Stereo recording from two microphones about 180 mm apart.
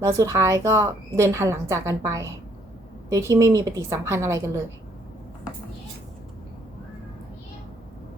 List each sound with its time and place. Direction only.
0.0 s a woman's voice: 15° right (ahead or behind)